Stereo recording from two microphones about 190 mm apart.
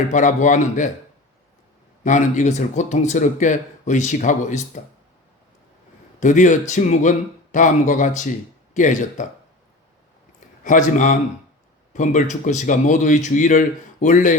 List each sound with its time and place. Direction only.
0.1 s speech: 40° left (ahead or behind)
2.0 s speech: 40° left (ahead or behind)
6.1 s speech: 40° left (ahead or behind)
10.6 s a man's voice: 40° left (ahead or behind)